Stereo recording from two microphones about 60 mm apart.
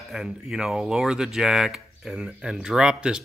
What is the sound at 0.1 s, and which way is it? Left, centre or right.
Speech, centre.